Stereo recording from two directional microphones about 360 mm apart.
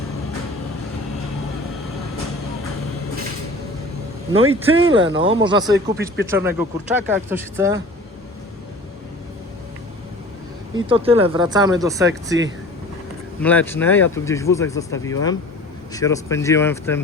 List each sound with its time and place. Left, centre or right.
4.3 s speech: right
5.1 s speech: centre
10.8 s speech: centre
13.4 s speech: centre